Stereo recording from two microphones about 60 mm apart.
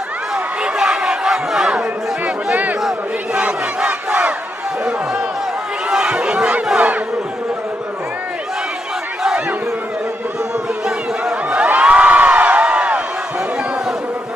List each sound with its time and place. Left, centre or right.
0.6 s crowd: centre
2.2 s a sound: right
3.3 s battle cry: right
5.9 s battle cry: centre
11.5 s crowd: right